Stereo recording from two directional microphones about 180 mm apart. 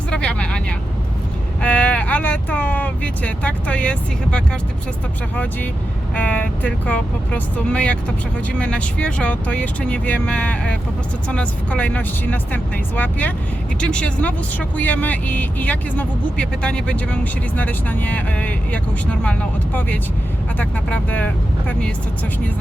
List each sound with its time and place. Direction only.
0.1 s vehicle: 5° left (ahead or behind)
1.6 s vehicle: 5° left (ahead or behind)
6.1 s speech: 5° left (ahead or behind)